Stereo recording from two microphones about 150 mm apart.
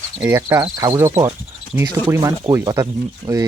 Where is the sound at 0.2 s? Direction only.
20° right (ahead or behind).